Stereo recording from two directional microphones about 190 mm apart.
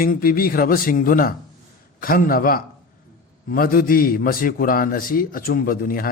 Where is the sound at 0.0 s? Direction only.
50° left (ahead or behind).